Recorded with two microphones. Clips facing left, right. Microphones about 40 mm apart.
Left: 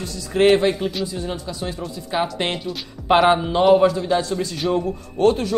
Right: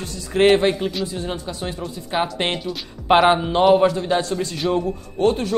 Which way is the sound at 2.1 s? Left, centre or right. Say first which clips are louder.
Right 1 dB; right.